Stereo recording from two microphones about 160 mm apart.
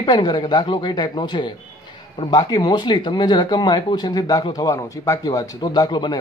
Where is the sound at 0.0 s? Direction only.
25° left (ahead or behind).